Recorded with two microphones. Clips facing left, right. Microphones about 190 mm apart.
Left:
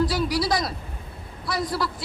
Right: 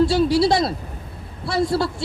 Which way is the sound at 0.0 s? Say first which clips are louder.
Right 7 dB; 25° right (ahead or behind).